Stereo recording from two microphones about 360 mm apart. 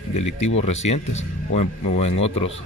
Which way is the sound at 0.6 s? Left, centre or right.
Centre.